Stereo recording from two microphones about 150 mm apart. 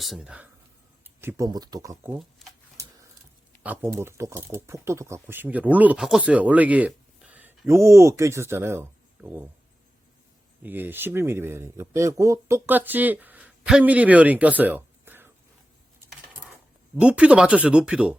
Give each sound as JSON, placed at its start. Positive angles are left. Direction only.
{"t": 0.0, "sound": "speech", "side_deg": 0}
{"t": 1.2, "sound": "speech", "side_deg": -20}
{"t": 2.4, "sound": "a sound", "side_deg": 0}
{"t": 3.6, "sound": "speech", "side_deg": -10}
{"t": 10.6, "sound": "speech", "side_deg": -15}
{"t": 17.0, "sound": "speech", "side_deg": -10}